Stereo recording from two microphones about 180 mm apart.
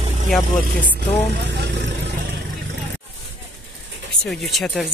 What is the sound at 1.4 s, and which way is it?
Vehicle, 75° right (ahead or behind).